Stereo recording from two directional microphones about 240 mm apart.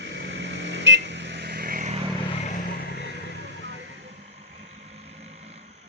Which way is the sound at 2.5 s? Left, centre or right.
Left.